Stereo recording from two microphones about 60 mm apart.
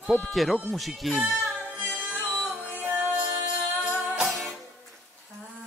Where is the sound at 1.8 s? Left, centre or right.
Right.